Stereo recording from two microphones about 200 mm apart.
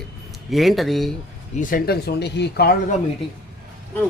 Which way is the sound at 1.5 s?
50° left (ahead or behind).